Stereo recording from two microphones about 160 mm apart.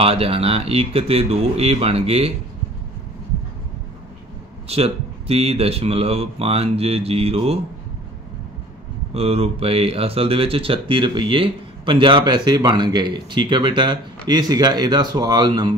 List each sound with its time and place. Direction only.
0.0 s speech: 35° right (ahead or behind)
4.6 s speech: 40° right (ahead or behind)
9.1 s speech: 40° right (ahead or behind)